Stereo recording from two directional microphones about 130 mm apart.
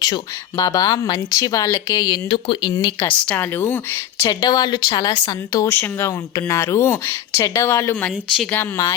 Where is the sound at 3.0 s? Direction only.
10° left (ahead or behind).